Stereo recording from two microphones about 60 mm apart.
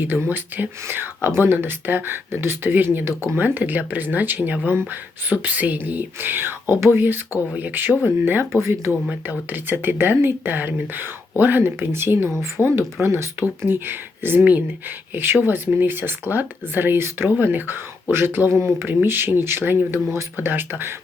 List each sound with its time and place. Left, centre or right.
0.0 s speech: right
3.3 s speech: right
6.7 s speech: right
7.5 s speech: right
8.6 s speech: right
9.5 s speech: right
20.3 s speech: right